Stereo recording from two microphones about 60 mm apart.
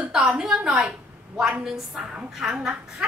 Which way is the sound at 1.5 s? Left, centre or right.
Centre.